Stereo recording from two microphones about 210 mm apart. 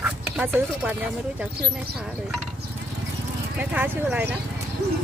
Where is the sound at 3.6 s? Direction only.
10° right (ahead or behind).